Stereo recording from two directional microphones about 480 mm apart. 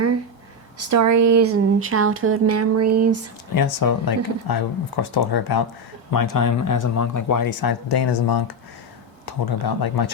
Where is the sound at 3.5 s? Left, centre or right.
Left.